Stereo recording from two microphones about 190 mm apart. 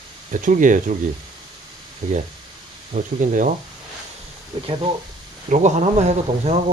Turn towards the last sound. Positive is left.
turn(degrees=-35)  # may be behind; listen again after turning